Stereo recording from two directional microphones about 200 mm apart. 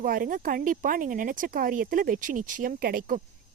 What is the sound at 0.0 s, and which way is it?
A woman's voice, 45° right (ahead or behind).